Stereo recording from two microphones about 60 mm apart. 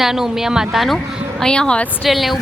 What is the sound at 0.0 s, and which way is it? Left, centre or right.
Speech, centre.